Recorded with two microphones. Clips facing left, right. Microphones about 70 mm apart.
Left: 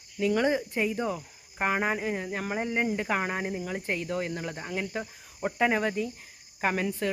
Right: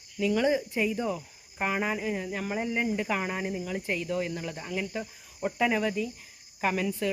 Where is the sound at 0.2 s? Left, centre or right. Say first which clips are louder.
Even; left.